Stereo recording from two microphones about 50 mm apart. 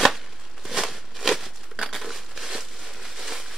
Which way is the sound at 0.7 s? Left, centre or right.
Centre.